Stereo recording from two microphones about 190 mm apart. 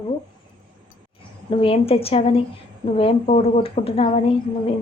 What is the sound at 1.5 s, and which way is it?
A woman's voice, 30° left (ahead or behind).